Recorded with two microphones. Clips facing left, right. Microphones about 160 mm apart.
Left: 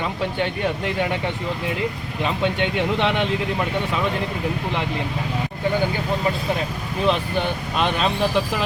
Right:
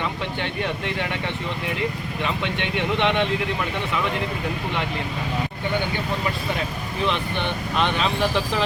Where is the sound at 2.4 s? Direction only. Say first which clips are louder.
Left 4 dB; 35° left (ahead or behind).